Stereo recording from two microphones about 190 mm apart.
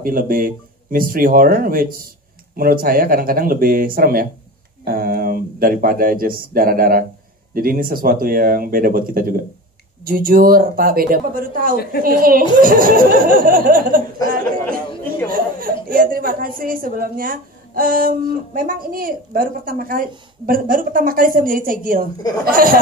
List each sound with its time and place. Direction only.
0.0 s a woman's voice: 50° right (ahead or behind)
11.7 s a woman's voice: 55° left (ahead or behind)
12.0 s a woman's voice: 50° right (ahead or behind)